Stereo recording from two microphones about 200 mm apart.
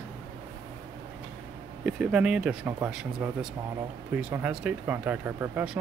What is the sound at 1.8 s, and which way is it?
Speech, 5° right (ahead or behind).